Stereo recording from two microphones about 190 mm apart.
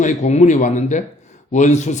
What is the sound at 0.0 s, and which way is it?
A man's voice, 35° left (ahead or behind).